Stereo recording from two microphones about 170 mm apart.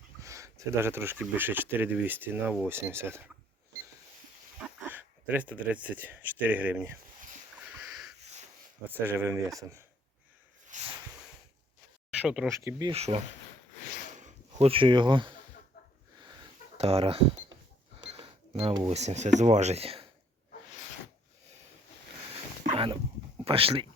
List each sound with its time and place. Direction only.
0.2 s speech: 20° right (ahead or behind)
4.8 s speech: 10° right (ahead or behind)
7.6 s sniff: 5° right (ahead or behind)
9.0 s speech: 15° right (ahead or behind)
10.7 s a sound: 45° right (ahead or behind)
12.1 s speech: 5° right (ahead or behind)
12.5 s speech: 15° right (ahead or behind)
12.9 s speech: 40° right (ahead or behind)
16.7 s speech: 35° right (ahead or behind)
22.6 s a sound: 30° right (ahead or behind)
23.5 s speech: 35° right (ahead or behind)